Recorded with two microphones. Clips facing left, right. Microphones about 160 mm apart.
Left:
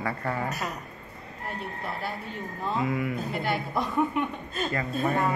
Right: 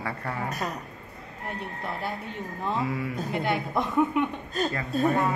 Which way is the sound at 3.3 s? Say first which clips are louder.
Right 2 dB; 20° right (ahead or behind).